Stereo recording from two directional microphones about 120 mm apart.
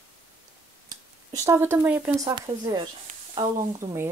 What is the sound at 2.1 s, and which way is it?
Speech, 30° right (ahead or behind).